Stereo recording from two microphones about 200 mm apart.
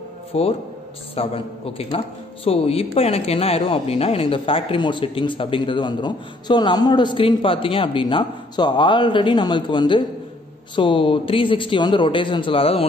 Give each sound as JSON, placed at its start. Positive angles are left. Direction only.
{"t": 0.3, "sound": "a man's voice", "side_deg": 30}